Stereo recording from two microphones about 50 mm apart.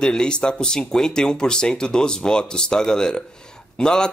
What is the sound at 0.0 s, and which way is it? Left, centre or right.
Speech, centre.